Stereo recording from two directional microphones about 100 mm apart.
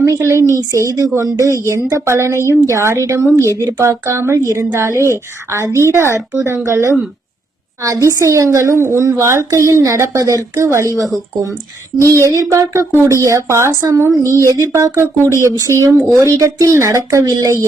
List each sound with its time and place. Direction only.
0.0 s a woman's voice: 30° right (ahead or behind)
12.2 s speech: 35° right (ahead or behind)
16.0 s speech: centre (ahead or behind)
16.2 s speech: 35° right (ahead or behind)